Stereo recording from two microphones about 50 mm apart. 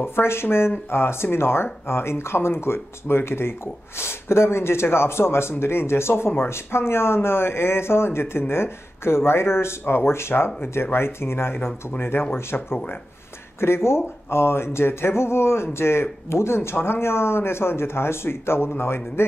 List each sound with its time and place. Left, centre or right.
0.0 s speech: left